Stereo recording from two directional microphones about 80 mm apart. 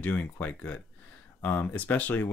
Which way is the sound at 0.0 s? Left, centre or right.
Left.